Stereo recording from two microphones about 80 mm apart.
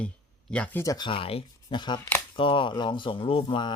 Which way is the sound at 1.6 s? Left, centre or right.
Left.